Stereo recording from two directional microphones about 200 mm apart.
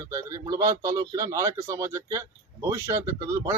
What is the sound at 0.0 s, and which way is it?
A man's voice, 15° right (ahead or behind).